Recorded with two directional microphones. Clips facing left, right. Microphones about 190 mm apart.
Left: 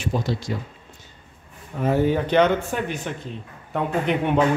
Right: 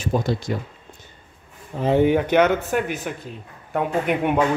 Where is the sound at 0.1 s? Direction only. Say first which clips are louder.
Right 4 dB; 50° right (ahead or behind).